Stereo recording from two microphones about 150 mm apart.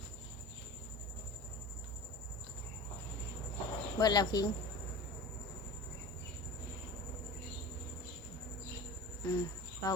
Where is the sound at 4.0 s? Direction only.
25° left (ahead or behind).